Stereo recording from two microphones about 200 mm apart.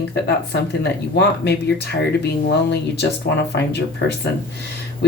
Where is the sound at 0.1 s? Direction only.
55° left (ahead or behind).